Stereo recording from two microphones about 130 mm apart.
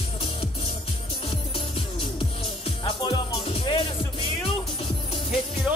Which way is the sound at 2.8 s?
35° left (ahead or behind).